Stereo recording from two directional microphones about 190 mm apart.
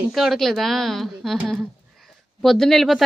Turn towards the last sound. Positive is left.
turn(degrees=0)  # may be behind; listen again after turning